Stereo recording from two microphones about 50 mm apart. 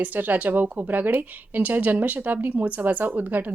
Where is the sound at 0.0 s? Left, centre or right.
Right.